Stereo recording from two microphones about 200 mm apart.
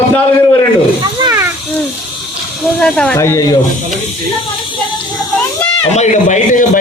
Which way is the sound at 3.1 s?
15° left (ahead or behind).